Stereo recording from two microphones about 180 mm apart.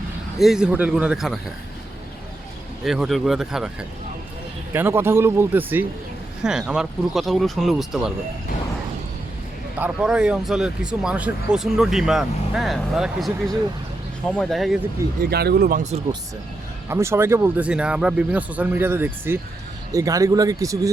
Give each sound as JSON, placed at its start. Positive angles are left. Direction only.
{"t": 0.3, "sound": "speech", "side_deg": 0}
{"t": 2.8, "sound": "speech", "side_deg": 0}
{"t": 9.7, "sound": "speech", "side_deg": -5}
{"t": 15.2, "sound": "speech", "side_deg": -60}
{"t": 16.9, "sound": "speech", "side_deg": -15}